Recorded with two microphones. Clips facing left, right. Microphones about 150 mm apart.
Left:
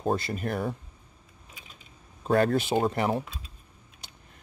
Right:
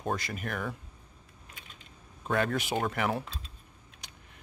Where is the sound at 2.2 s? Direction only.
35° left (ahead or behind).